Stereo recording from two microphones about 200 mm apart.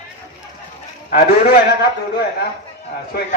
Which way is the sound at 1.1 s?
50° left (ahead or behind).